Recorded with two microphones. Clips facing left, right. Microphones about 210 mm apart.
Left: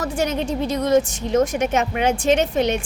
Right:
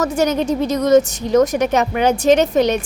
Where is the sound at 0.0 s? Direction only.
40° right (ahead or behind).